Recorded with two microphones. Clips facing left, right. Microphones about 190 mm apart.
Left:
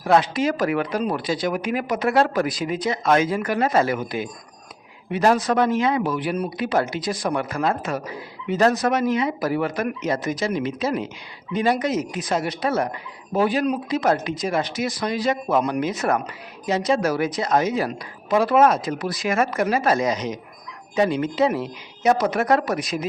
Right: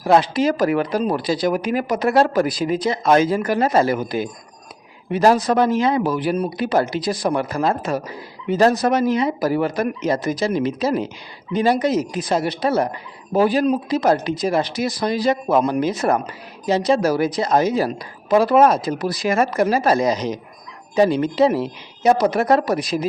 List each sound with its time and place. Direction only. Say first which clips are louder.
0.0 s speech: right 3 dB; 35° right (ahead or behind)